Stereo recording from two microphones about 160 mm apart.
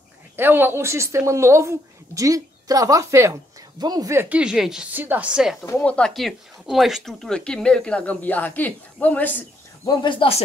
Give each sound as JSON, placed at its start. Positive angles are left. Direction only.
{"t": 0.4, "sound": "a woman's voice", "side_deg": -15}
{"t": 5.7, "sound": "speech", "side_deg": 10}
{"t": 9.8, "sound": "speech", "side_deg": 30}